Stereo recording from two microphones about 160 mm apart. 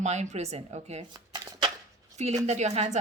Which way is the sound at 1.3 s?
25° right (ahead or behind).